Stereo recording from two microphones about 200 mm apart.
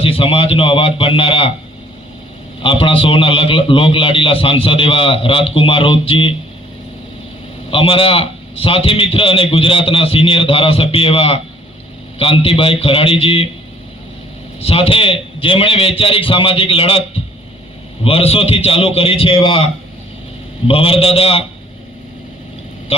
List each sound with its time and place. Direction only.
0.0 s a man's voice: 25° left (ahead or behind)
2.6 s a man's voice: 25° left (ahead or behind)
7.7 s a man's voice: 25° left (ahead or behind)
14.6 s a man's voice: 30° left (ahead or behind)
18.0 s a man's voice: 30° left (ahead or behind)
20.7 s a man's voice: 30° left (ahead or behind)
22.9 s speech: 30° left (ahead or behind)